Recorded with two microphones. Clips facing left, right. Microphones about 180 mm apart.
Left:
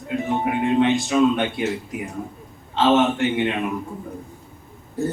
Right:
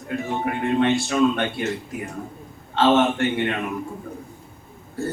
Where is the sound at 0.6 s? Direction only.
15° left (ahead or behind).